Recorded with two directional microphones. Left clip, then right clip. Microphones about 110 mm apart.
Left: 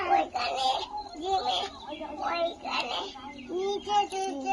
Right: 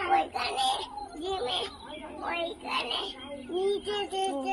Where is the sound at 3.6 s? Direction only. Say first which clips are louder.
Left 2 dB; 20° left (ahead or behind).